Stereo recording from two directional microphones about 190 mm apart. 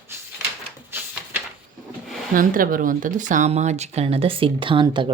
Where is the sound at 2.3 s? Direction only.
45° right (ahead or behind); by 5.1 s 25° right (ahead or behind).